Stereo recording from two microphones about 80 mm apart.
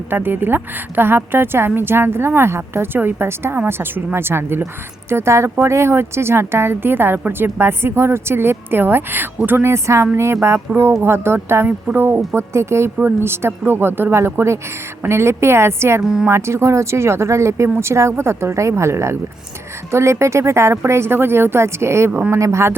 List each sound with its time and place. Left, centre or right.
0.1 s a woman's voice: right